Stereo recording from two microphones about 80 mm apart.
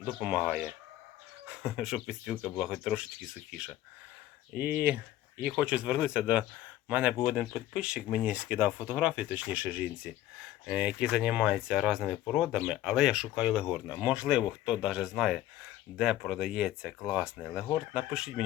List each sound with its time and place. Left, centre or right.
0.2 s speech: centre
0.4 s speech: centre
4.5 s speech: right